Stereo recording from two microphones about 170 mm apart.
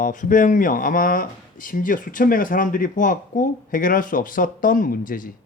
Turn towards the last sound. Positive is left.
turn(degrees=55)  # may be behind; listen again after turning